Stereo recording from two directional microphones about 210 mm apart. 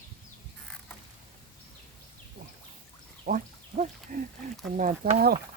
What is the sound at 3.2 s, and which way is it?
Speech, 40° right (ahead or behind).